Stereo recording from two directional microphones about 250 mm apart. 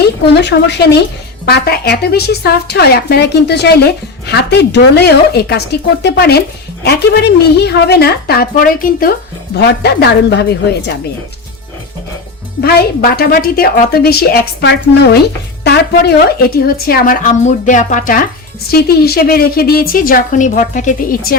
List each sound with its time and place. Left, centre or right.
0.7 s a woman's voice: left
12.6 s a woman's voice: left